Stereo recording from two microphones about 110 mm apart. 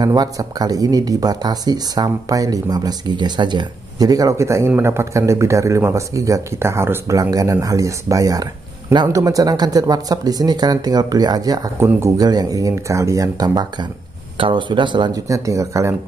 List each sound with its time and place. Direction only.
0.0 s speech: 40° right (ahead or behind)
14.4 s speech: 50° right (ahead or behind)
15.2 s speech: 30° right (ahead or behind)